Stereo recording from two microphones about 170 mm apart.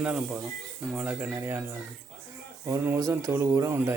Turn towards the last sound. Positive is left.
turn(degrees=-15)  # may be behind; listen again after turning